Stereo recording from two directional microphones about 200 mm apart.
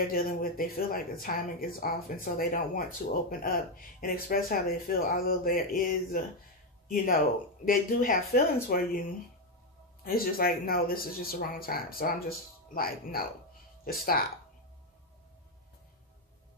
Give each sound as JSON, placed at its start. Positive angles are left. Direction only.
{"t": 0.0, "sound": "speech", "side_deg": 45}
{"t": 10.0, "sound": "speech", "side_deg": 45}